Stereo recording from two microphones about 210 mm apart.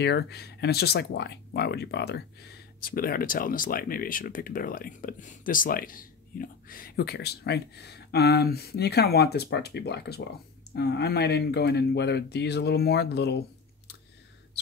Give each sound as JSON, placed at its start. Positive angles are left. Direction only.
{"t": 0.0, "sound": "speech", "side_deg": 50}